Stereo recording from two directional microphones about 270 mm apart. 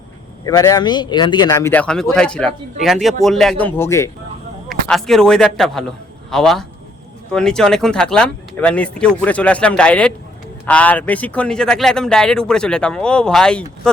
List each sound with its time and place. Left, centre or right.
0.4 s a man's voice: centre